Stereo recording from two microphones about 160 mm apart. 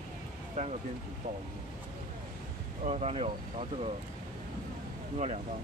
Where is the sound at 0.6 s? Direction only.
45° right (ahead or behind).